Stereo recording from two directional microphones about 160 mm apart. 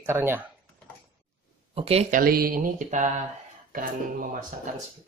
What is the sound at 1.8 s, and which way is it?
Speech, 40° right (ahead or behind).